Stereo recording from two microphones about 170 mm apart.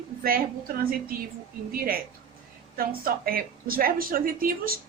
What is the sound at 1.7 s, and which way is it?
A woman's voice, 60° right (ahead or behind).